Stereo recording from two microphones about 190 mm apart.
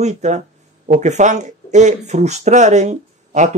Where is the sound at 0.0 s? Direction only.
35° right (ahead or behind).